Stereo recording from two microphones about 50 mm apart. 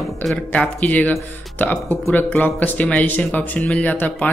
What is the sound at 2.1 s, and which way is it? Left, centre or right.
Speech, left.